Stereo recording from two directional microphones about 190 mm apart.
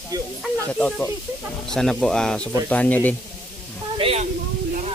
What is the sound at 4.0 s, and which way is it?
Speech, 30° right (ahead or behind).